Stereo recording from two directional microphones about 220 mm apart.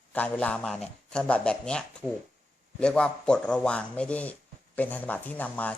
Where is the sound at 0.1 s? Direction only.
5° left (ahead or behind).